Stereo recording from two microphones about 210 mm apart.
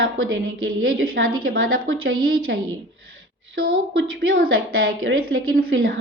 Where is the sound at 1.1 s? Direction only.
75° right (ahead or behind).